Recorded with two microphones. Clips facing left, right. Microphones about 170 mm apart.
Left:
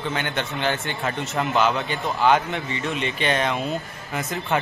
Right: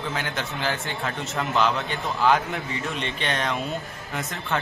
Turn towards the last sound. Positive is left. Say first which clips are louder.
# left 3 dB
turn(degrees=0)  # may be behind; listen again after turning